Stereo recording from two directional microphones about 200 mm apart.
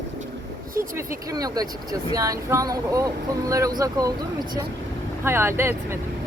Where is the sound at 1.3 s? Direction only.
20° right (ahead or behind).